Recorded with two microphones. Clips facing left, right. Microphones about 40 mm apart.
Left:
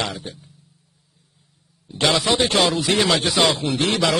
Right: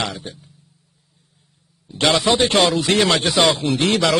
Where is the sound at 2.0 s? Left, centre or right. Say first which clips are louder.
Right 2 dB; right.